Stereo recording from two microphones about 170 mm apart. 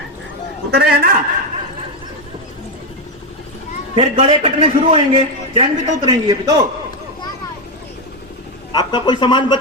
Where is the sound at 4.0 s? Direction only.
30° right (ahead or behind).